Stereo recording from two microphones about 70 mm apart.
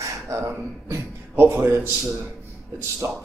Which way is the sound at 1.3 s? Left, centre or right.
Right.